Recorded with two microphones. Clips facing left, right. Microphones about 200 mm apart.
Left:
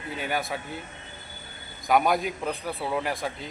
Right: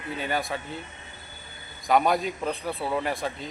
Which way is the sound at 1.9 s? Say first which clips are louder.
Even; 5° left (ahead or behind).